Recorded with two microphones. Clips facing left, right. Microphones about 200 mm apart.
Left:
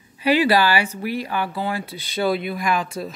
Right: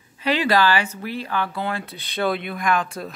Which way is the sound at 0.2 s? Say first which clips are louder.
Left 2 dB; 10° left (ahead or behind).